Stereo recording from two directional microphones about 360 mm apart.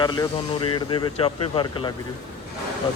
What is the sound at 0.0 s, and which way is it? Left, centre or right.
Speech, centre.